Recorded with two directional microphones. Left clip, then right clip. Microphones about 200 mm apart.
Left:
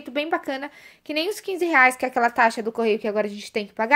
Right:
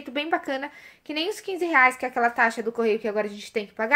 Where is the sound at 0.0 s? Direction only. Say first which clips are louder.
Left 1 dB; 25° left (ahead or behind).